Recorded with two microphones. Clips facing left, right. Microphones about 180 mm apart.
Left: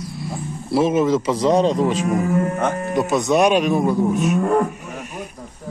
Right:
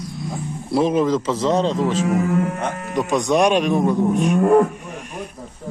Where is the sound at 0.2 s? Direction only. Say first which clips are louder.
Right 1 dB; 5° left (ahead or behind).